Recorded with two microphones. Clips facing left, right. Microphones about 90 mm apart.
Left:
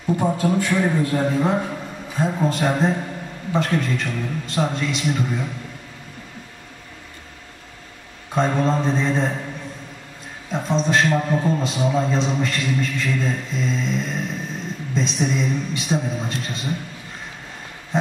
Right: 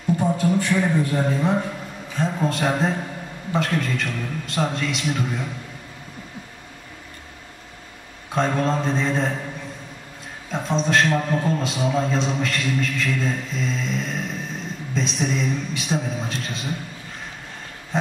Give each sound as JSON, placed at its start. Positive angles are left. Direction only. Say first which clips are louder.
{"t": 0.4, "sound": "a man's voice", "louder": "left 1 dB", "side_deg": 30}
{"t": 2.1, "sound": "a man's voice", "louder": "left 2 dB", "side_deg": 5}
{"t": 8.3, "sound": "a man's voice", "louder": "left 1 dB", "side_deg": 0}
{"t": 10.5, "sound": "a man's voice", "louder": "left 1 dB", "side_deg": 0}